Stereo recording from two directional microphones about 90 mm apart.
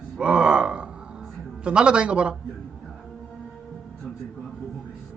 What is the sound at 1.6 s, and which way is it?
Speech, 10° right (ahead or behind).